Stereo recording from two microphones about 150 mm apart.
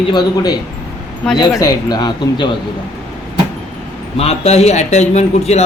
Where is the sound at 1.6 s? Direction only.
25° left (ahead or behind).